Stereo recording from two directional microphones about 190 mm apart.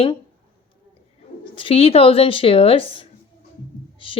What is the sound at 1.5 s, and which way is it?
Speech, 30° left (ahead or behind).